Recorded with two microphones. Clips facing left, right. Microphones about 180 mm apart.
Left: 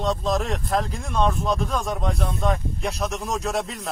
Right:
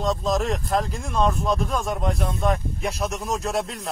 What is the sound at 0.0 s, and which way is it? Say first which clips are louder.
Speech: right 1 dB; centre (ahead or behind).